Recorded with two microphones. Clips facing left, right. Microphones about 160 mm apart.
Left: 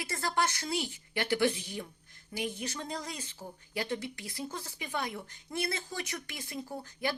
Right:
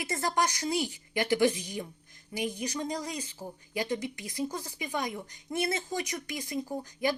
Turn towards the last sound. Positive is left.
turn(degrees=-15)  # may be behind; listen again after turning